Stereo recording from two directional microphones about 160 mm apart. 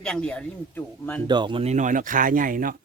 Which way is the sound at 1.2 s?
30° right (ahead or behind).